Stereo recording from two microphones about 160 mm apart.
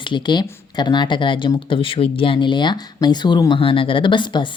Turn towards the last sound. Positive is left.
turn(degrees=30)  # may be behind; listen again after turning